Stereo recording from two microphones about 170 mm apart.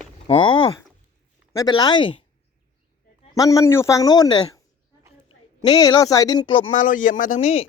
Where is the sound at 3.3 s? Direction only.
20° left (ahead or behind).